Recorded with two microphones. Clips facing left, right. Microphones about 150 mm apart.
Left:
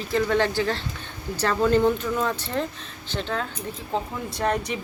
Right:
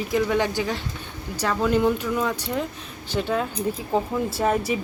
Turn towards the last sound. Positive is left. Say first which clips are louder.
# right 3 dB
turn(degrees=-5)  # may be behind; listen again after turning